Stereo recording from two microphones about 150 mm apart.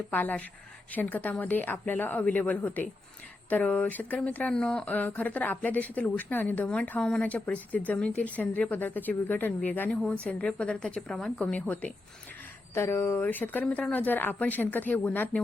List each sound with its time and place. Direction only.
0.1 s speech: 10° left (ahead or behind)